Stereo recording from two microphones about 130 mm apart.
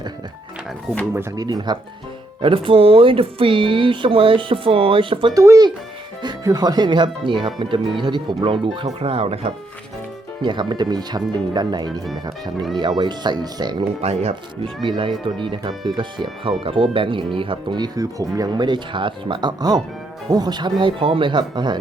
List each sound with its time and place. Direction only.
1.1 s speech: 20° right (ahead or behind)
1.5 s speech: 35° right (ahead or behind)
5.3 s speech: 25° right (ahead or behind); by 9.5 s 50° right (ahead or behind)
10.4 s speech: 35° right (ahead or behind)
13.0 s speech: 35° right (ahead or behind)
14.0 s speech: 55° right (ahead or behind)
14.8 s speech: 40° right (ahead or behind)